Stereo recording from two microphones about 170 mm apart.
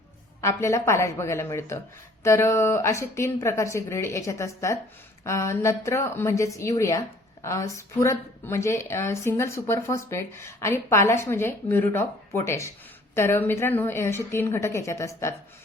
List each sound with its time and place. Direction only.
0.4 s speech: 15° left (ahead or behind)